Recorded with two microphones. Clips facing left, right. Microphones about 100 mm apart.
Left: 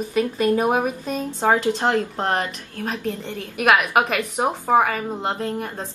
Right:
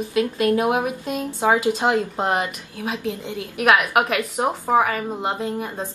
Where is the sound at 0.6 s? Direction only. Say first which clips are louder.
Left 1 dB; 10° right (ahead or behind).